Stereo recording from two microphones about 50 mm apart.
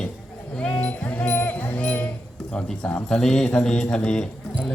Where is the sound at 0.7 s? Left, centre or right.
Left.